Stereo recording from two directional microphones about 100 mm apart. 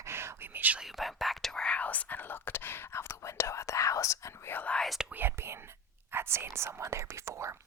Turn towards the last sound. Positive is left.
turn(degrees=-30)  # may be behind; listen again after turning